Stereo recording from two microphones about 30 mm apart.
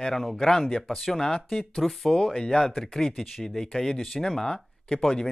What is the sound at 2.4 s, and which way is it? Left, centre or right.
Speech, left.